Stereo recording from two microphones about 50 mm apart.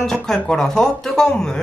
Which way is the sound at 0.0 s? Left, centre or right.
Centre.